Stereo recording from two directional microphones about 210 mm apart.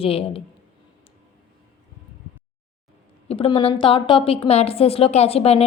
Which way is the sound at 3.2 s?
25° left (ahead or behind).